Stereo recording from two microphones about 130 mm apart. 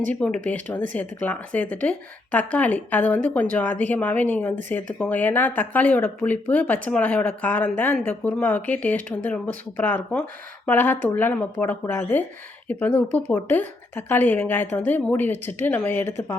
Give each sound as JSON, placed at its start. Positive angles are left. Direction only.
{"t": 0.0, "sound": "speech", "side_deg": 10}